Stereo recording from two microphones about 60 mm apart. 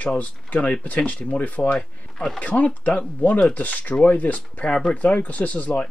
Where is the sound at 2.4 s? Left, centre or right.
Left.